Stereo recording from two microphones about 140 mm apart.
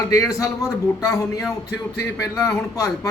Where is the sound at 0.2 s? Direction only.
20° left (ahead or behind).